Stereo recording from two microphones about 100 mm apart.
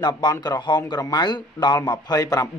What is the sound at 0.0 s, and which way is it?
Speech, 45° left (ahead or behind).